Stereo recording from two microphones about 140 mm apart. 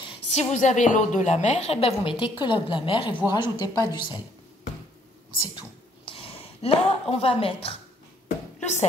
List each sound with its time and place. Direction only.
0.3 s a woman's voice: 50° left (ahead or behind); by 4.2 s 30° left (ahead or behind)
6.0 s a woman's voice: 45° left (ahead or behind)